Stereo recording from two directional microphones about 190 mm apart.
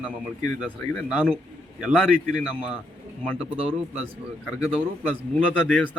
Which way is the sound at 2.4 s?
5° right (ahead or behind).